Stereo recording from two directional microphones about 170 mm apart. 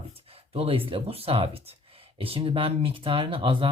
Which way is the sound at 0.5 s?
35° right (ahead or behind).